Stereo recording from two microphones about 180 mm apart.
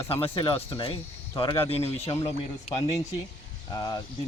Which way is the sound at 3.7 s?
20° left (ahead or behind).